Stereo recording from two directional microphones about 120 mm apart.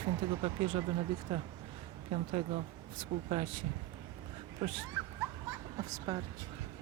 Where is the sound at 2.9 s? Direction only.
60° right (ahead or behind).